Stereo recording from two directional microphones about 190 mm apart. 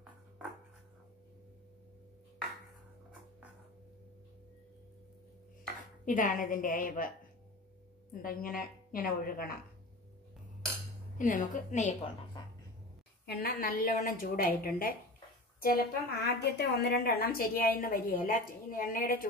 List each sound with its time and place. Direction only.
6.0 s a woman's voice: 45° left (ahead or behind)
8.1 s a woman's voice: 50° left (ahead or behind)
11.1 s a woman's voice: 45° left (ahead or behind)
13.2 s a woman's voice: 55° left (ahead or behind)